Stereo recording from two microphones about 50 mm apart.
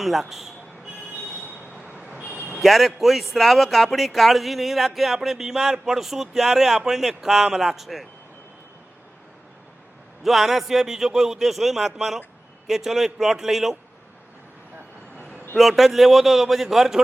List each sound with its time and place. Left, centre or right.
0.0 s speech: centre
2.0 s vehicle: right
2.6 s speech: centre
10.2 s a man's voice: centre
15.5 s speech: centre